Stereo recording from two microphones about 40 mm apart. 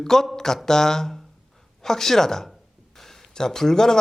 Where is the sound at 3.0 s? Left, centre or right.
Centre.